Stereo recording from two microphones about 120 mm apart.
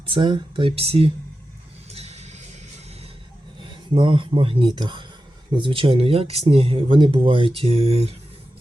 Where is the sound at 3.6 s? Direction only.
45° right (ahead or behind).